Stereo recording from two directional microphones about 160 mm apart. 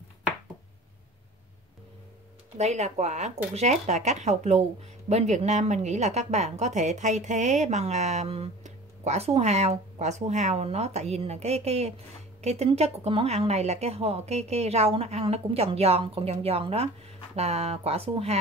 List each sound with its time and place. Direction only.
2.5 s a woman's voice: 45° right (ahead or behind)